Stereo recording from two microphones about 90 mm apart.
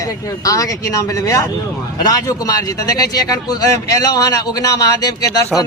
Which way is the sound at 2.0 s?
45° left (ahead or behind).